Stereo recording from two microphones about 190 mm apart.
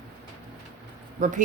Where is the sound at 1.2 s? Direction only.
40° right (ahead or behind).